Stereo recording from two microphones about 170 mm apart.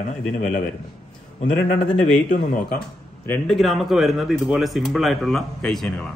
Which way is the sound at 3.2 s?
5° left (ahead or behind).